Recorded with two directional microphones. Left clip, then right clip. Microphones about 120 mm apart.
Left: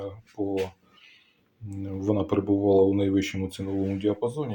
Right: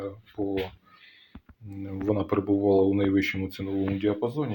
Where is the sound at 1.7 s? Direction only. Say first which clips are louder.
Left 1 dB; 25° left (ahead or behind).